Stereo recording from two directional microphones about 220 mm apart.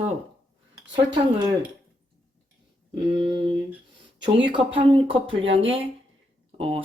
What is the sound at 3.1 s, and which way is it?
Speech, 25° right (ahead or behind).